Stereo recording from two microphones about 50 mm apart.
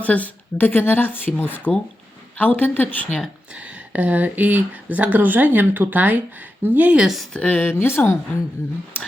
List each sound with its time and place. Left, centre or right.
0.0 s speech: left
3.5 s speech: right
6.9 s speech: centre
7.3 s speech: left
7.6 s speech: left